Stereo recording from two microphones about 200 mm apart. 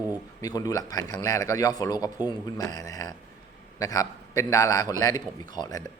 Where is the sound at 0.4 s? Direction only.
15° left (ahead or behind).